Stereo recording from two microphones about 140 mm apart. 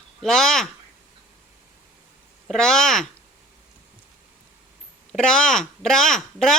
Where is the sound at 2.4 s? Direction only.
5° left (ahead or behind).